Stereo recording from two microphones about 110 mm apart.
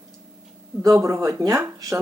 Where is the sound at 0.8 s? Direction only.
30° right (ahead or behind).